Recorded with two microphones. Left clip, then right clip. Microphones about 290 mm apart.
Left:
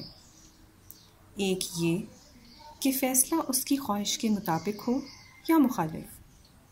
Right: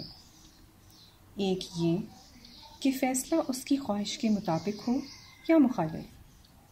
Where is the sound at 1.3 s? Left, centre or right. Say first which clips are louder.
Left 2 dB; right.